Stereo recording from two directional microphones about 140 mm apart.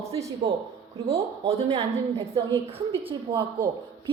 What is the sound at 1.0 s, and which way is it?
A woman's voice, 45° right (ahead or behind).